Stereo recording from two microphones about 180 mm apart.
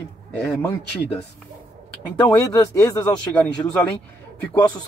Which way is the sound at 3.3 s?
5° left (ahead or behind).